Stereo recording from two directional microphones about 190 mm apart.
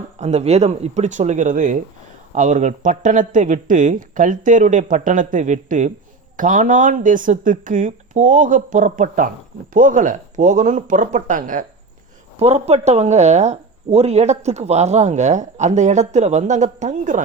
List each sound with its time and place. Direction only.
0.2 s speech: 35° right (ahead or behind)